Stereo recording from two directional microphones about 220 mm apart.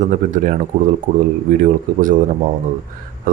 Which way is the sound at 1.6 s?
35° right (ahead or behind).